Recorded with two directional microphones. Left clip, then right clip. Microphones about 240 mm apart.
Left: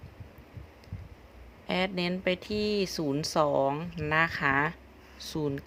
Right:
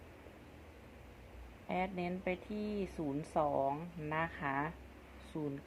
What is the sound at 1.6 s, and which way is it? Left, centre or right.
Speech, left.